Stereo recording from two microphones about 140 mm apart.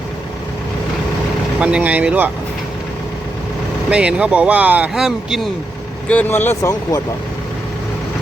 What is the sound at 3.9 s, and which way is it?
Speech, 10° right (ahead or behind).